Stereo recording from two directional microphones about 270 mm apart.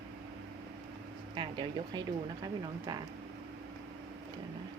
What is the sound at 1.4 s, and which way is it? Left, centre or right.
Speech, centre.